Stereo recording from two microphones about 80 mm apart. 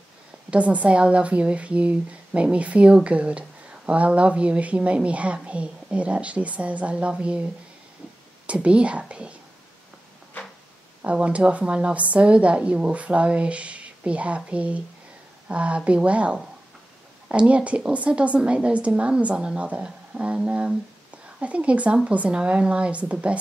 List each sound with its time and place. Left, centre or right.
0.5 s a woman's voice: centre
8.5 s a woman's voice: centre
11.0 s a woman's voice: centre